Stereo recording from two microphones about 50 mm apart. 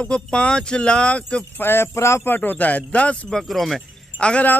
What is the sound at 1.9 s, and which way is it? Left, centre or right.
Speech, left.